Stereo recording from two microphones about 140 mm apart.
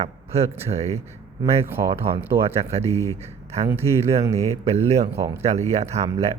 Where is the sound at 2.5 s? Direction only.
50° right (ahead or behind).